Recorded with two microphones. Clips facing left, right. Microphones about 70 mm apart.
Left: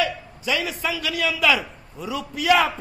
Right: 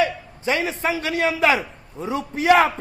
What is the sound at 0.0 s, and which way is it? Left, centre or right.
A man's voice, right.